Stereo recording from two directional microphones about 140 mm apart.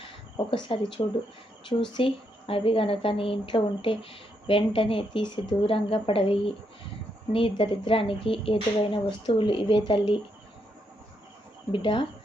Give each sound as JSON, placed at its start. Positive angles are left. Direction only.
{"t": 0.0, "sound": "speech", "side_deg": 35}
{"t": 11.7, "sound": "speech", "side_deg": 35}